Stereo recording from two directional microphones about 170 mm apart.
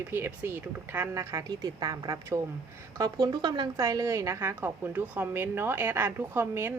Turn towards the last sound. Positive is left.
turn(degrees=-15)  # may be behind; listen again after turning